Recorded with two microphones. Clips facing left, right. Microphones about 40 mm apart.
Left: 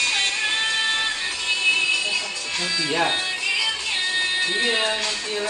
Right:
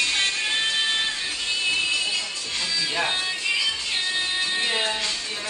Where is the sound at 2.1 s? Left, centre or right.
Centre.